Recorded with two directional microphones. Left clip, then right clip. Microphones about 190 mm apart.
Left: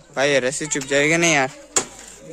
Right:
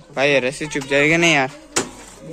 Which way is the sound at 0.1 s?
25° left (ahead or behind).